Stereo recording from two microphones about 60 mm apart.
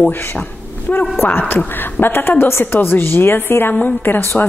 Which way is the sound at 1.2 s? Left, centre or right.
Left.